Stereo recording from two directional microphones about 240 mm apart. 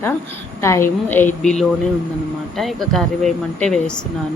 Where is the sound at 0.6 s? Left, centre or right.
Centre.